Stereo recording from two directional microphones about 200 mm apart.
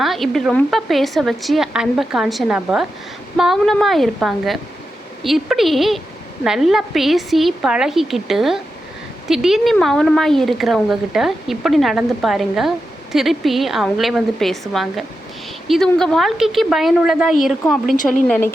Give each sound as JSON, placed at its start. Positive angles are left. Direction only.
{"t": 0.0, "sound": "speech", "side_deg": 0}
{"t": 17.9, "sound": "a woman's voice", "side_deg": 40}
{"t": 18.3, "sound": "speech", "side_deg": 10}